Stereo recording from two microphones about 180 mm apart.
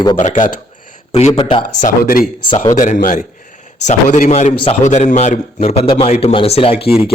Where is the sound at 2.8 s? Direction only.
45° left (ahead or behind).